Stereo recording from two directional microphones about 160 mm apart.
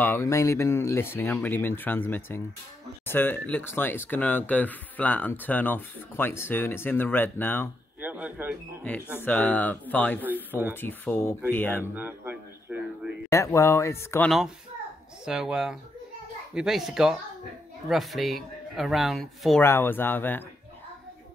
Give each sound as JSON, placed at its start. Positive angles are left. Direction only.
{"t": 0.0, "sound": "speech", "side_deg": 15}
{"t": 8.0, "sound": "speech", "side_deg": -10}
{"t": 8.8, "sound": "speech", "side_deg": 10}
{"t": 10.2, "sound": "speech", "side_deg": -10}
{"t": 10.7, "sound": "speech", "side_deg": 15}
{"t": 11.9, "sound": "a sound", "side_deg": -10}
{"t": 13.3, "sound": "speech", "side_deg": 15}
{"t": 15.2, "sound": "speech", "side_deg": -5}
{"t": 19.6, "sound": "speech", "side_deg": 15}